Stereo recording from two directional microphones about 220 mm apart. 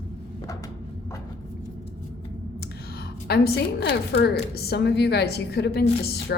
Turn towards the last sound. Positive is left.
turn(degrees=45)  # may be behind; listen again after turning